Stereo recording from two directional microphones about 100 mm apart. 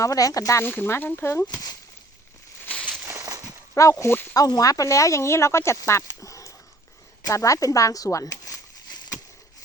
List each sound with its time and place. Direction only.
0.0 s speech: 35° left (ahead or behind)
0.6 s speech: 20° left (ahead or behind)
3.1 s a sound: 30° right (ahead or behind)
3.8 s speech: 30° left (ahead or behind)
4.4 s speech: 40° left (ahead or behind)
6.1 s dog: 30° left (ahead or behind)
7.2 s a sound: 35° left (ahead or behind)